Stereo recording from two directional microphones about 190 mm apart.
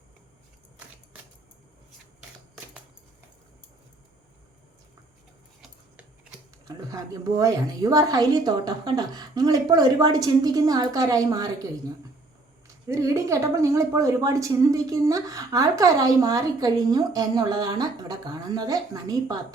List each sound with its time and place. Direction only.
6.7 s a woman's voice: 20° right (ahead or behind)
12.9 s speech: 15° right (ahead or behind)